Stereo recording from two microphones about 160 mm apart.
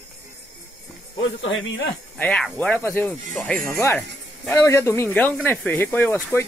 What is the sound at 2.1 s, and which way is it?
Speech, 10° left (ahead or behind).